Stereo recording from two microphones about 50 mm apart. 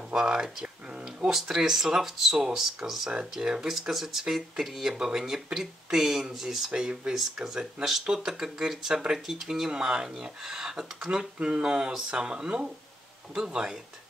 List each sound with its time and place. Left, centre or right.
0.1 s a sound: centre
1.0 s speech: centre
6.7 s speech: centre